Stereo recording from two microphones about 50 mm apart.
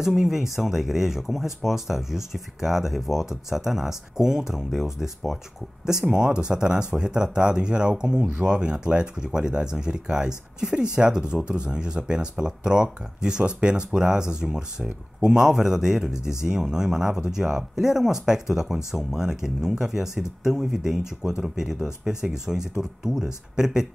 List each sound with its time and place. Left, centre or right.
0.0 s speech: centre